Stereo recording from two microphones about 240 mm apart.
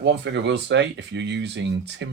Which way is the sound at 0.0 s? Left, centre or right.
Right.